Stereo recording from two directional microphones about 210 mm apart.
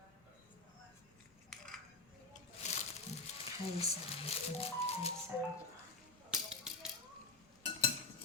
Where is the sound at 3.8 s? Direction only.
30° left (ahead or behind).